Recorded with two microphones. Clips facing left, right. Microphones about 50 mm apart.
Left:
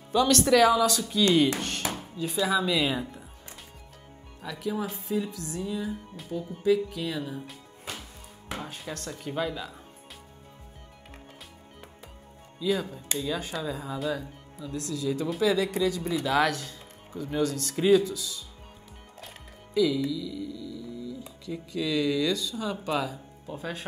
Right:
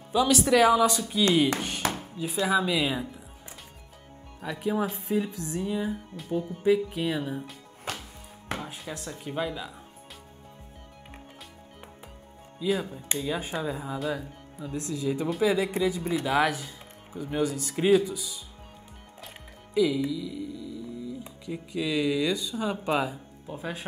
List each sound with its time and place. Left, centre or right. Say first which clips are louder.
0.1 s speech: left 1 dB; centre
0.7 s music: right 1 dB; right
1.8 s chop: right 5 dB; right
2.4 s speech: right 1 dB; centre
2.7 s a woman's voice: even; centre
4.4 s music: right 3 dB; right
7.9 s music: right 4 dB; right
8.5 s speech: even; centre
12.6 s a woman's voice: even; centre
12.9 s music: even; right
13.9 s a woman's voice: left 1 dB; centre
14.6 s music: right 1 dB; right
16.3 s speech: even; centre
19.7 s speech: even; right